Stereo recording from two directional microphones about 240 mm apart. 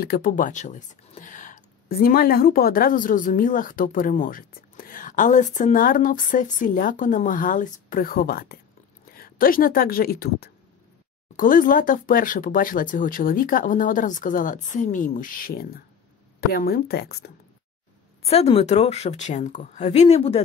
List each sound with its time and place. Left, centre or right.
0.0 s speech: left
18.2 s a woman's voice: left